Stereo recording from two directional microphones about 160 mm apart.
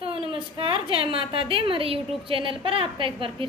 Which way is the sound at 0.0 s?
35° right (ahead or behind).